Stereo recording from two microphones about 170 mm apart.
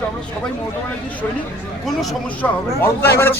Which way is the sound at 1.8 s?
Centre (ahead or behind).